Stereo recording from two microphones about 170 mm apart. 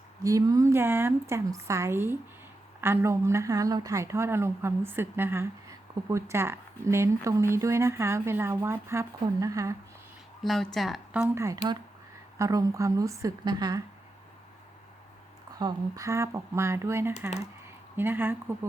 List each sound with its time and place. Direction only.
0.2 s a woman's voice: 20° right (ahead or behind)
10.4 s a woman's voice: centre (ahead or behind)
11.3 s a woman's voice: 15° right (ahead or behind)
15.5 s speech: 20° right (ahead or behind)